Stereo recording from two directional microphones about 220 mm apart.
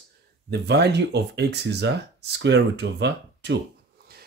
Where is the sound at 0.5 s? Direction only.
50° right (ahead or behind).